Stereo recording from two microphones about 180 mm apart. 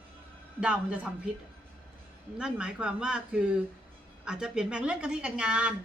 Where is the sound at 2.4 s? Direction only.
5° right (ahead or behind).